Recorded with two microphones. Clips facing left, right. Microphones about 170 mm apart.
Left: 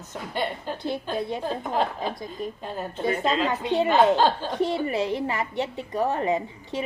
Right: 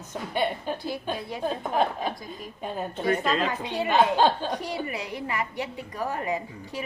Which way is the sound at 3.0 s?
25° left (ahead or behind).